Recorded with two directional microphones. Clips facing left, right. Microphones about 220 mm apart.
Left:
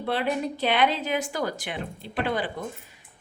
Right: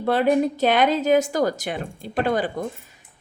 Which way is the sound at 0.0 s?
45° right (ahead or behind).